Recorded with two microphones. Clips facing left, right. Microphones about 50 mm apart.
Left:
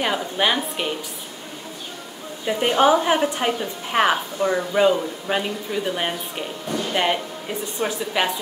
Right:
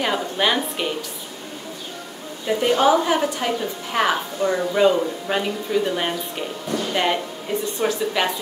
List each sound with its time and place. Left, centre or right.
0.0 s a woman's voice: centre
2.6 s a woman's voice: left